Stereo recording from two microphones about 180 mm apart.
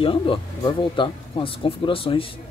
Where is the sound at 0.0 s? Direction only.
30° left (ahead or behind).